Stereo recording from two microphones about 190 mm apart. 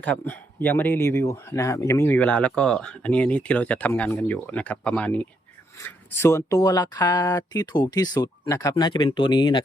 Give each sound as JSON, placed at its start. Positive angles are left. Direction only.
{"t": 0.0, "sound": "speech", "side_deg": 10}